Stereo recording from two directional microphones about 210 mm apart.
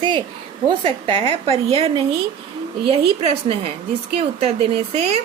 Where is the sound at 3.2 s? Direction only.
30° right (ahead or behind).